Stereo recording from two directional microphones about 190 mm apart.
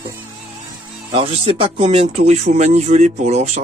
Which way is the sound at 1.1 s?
30° right (ahead or behind).